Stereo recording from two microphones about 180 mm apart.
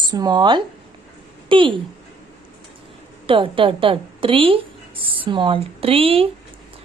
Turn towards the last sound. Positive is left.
turn(degrees=-30)  # may be behind; listen again after turning